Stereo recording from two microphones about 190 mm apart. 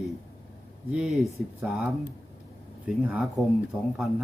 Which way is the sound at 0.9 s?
Centre (ahead or behind).